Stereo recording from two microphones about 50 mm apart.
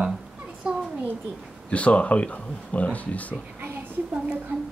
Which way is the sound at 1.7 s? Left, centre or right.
Left.